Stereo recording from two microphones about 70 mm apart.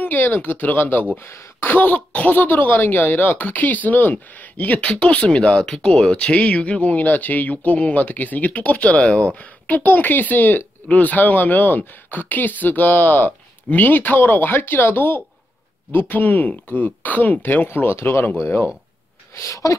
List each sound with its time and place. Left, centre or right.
0.0 s speech: left
1.1 s speech: left
1.6 s speech: left
19.3 s speech: left